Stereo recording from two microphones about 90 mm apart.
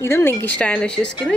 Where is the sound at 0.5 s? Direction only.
10° left (ahead or behind).